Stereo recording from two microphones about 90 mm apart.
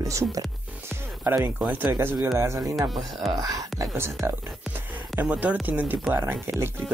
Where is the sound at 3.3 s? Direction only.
40° right (ahead or behind).